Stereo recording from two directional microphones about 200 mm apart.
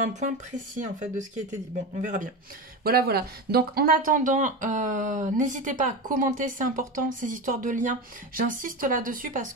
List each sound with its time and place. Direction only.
0.7 s speech: 40° right (ahead or behind)
2.8 s speech: 50° right (ahead or behind)